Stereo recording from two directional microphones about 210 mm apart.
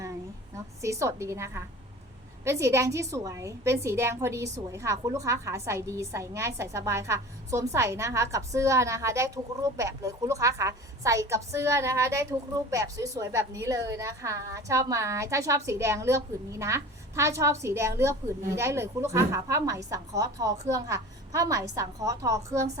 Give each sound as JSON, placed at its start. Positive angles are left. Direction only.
{"t": 0.5, "sound": "a woman's voice", "side_deg": -15}